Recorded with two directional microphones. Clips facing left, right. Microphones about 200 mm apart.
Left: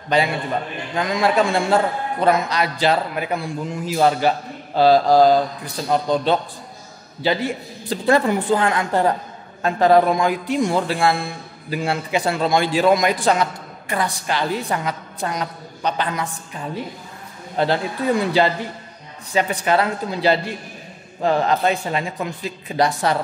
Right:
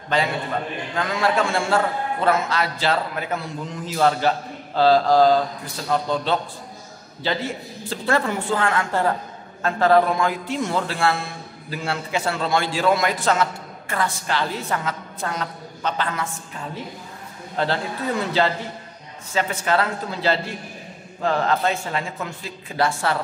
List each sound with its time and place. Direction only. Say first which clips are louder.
0.1 s a man's voice: left 3 dB; 15° left (ahead or behind)